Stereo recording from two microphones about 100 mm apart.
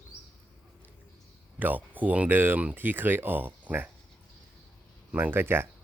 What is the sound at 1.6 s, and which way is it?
Speech, 15° right (ahead or behind).